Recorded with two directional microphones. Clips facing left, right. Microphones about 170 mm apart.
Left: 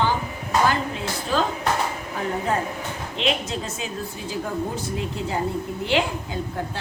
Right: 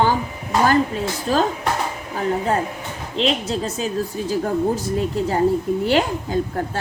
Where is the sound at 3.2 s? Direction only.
35° right (ahead or behind).